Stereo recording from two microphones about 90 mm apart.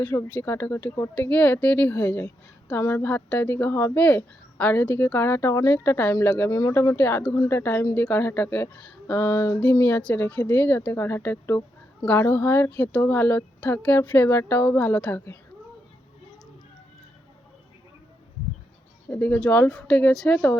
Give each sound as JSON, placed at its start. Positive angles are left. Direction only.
{"t": 0.0, "sound": "speech", "side_deg": 20}
{"t": 1.1, "sound": "a woman's voice", "side_deg": 15}
{"t": 4.0, "sound": "speech", "side_deg": 15}
{"t": 6.4, "sound": "speech", "side_deg": 35}
{"t": 7.9, "sound": "speech", "side_deg": 20}
{"t": 9.1, "sound": "speech", "side_deg": 30}
{"t": 9.9, "sound": "speech", "side_deg": 15}
{"t": 19.2, "sound": "a woman's voice", "side_deg": 10}
{"t": 20.3, "sound": "speech", "side_deg": 20}